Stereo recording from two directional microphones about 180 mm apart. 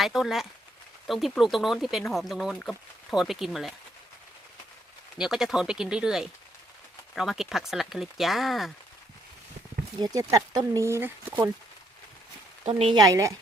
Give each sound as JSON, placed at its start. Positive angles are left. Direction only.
{"t": 0.0, "sound": "speech", "side_deg": 0}
{"t": 5.1, "sound": "speech", "side_deg": -5}
{"t": 10.0, "sound": "speech", "side_deg": -20}
{"t": 12.6, "sound": "speech", "side_deg": -25}